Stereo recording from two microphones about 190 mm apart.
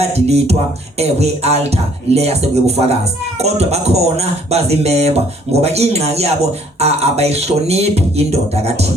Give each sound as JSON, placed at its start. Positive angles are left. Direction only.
{"t": 0.0, "sound": "a man's voice", "side_deg": -35}